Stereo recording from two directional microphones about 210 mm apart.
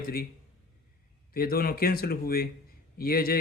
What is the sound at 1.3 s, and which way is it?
A man's voice, 45° left (ahead or behind).